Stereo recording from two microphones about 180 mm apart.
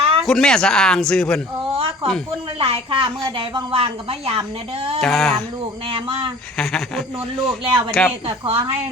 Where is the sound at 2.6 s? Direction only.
30° right (ahead or behind).